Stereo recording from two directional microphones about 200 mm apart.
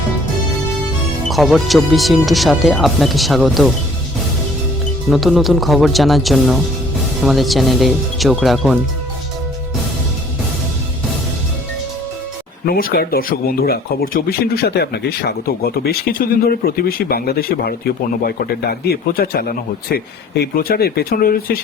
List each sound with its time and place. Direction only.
1.3 s speech: centre (ahead or behind)
5.0 s speech: centre (ahead or behind)
12.6 s speech: 50° left (ahead or behind)